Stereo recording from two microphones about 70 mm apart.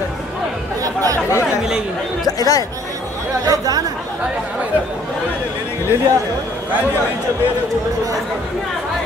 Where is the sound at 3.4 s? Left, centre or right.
Right.